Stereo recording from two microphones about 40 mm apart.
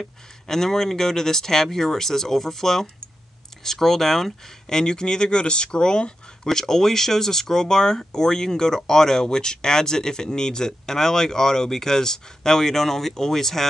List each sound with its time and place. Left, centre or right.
0.0 s speech: centre